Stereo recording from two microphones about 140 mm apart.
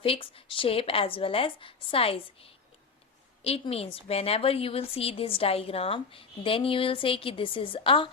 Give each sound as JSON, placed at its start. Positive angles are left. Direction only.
{"t": 0.0, "sound": "a woman's voice", "side_deg": 40}